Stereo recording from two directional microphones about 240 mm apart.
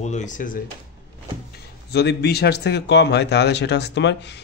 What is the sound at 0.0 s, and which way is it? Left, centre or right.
Speech, left.